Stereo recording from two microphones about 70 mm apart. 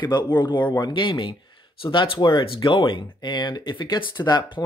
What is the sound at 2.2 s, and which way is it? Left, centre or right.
Speech, left.